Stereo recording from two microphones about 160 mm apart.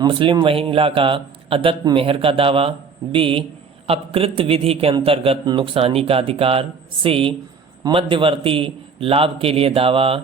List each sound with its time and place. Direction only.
0.0 s a man's voice: 35° right (ahead or behind)